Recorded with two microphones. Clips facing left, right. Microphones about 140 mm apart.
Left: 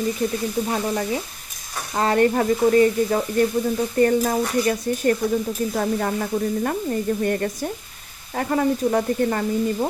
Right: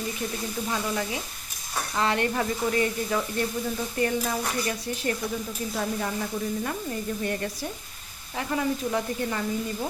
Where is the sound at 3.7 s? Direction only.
45° left (ahead or behind).